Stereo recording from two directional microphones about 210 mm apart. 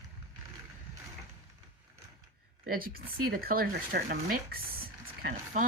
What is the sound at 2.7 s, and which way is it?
Speech, 45° right (ahead or behind).